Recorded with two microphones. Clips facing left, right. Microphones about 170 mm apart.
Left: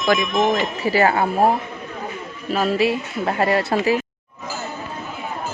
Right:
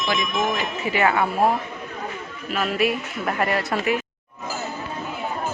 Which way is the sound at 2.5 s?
35° left (ahead or behind).